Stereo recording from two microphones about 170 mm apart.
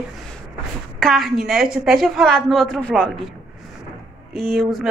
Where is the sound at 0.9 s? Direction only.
Centre (ahead or behind).